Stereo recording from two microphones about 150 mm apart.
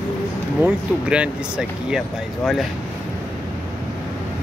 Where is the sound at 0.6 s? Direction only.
10° right (ahead or behind).